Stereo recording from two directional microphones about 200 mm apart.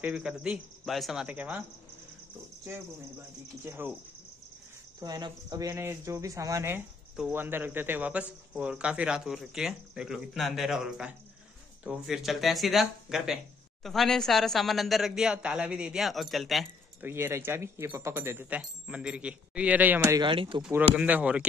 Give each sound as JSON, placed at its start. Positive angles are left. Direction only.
{"t": 0.0, "sound": "speech", "side_deg": -5}
{"t": 3.6, "sound": "speech", "side_deg": -10}
{"t": 5.0, "sound": "speech", "side_deg": -20}
{"t": 17.1, "sound": "speech", "side_deg": -10}
{"t": 20.6, "sound": "speech", "side_deg": -10}